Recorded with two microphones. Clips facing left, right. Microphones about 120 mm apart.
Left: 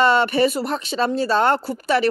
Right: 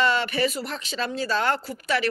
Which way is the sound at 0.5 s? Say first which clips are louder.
Left 8 dB; 50° left (ahead or behind).